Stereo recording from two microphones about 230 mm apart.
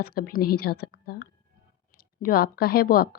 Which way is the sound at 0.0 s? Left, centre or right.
Left.